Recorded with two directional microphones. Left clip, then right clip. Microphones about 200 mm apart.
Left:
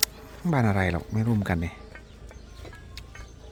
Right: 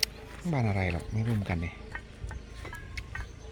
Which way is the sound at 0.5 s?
45° left (ahead or behind).